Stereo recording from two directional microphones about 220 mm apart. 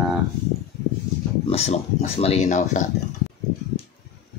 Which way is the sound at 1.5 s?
25° left (ahead or behind).